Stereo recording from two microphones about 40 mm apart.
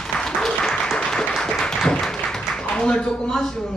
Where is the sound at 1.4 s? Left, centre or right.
Centre.